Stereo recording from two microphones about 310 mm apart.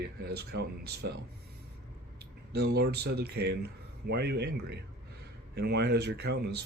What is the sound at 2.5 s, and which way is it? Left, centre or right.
Speech, right.